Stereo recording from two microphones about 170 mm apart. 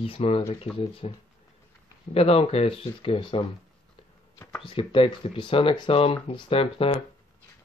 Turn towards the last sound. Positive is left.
turn(degrees=35)  # may be behind; listen again after turning